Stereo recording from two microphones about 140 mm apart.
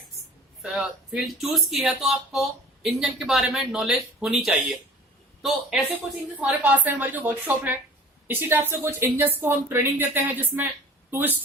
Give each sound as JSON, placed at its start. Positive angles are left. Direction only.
{"t": 0.6, "sound": "a man's voice", "side_deg": -5}